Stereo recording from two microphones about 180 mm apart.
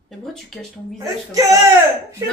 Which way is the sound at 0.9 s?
20° right (ahead or behind).